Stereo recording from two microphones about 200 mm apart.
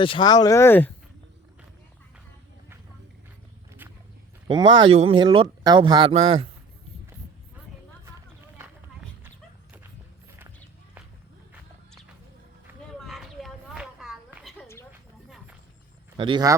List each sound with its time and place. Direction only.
0.0 s speech: 25° left (ahead or behind)
4.4 s speech: 25° right (ahead or behind)
13.1 s a sound: 5° right (ahead or behind)
16.1 s speech: 25° right (ahead or behind)